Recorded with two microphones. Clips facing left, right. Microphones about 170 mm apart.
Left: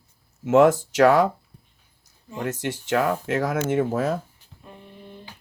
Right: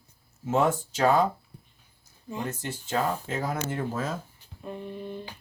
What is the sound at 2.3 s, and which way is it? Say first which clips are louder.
Speech: left 5 dB; 80° left.